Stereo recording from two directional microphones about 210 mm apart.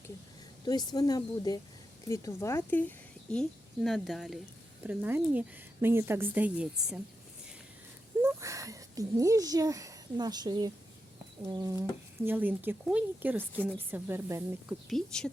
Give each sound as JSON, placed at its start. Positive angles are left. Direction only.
{"t": 0.6, "sound": "speech", "side_deg": 20}
{"t": 8.2, "sound": "speech", "side_deg": -15}
{"t": 13.5, "sound": "speech", "side_deg": 10}
{"t": 13.7, "sound": "speech", "side_deg": -10}
{"t": 14.8, "sound": "speech", "side_deg": 0}